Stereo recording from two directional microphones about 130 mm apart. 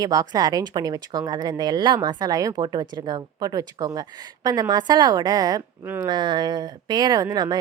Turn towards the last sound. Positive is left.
turn(degrees=-30)  # may be behind; listen again after turning